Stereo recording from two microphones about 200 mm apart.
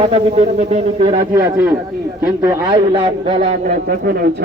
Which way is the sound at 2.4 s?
20° right (ahead or behind).